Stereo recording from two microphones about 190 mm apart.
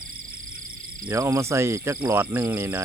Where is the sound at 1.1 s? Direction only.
15° right (ahead or behind).